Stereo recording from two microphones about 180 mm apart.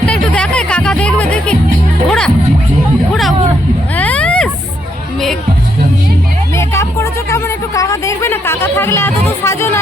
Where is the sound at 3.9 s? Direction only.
10° left (ahead or behind).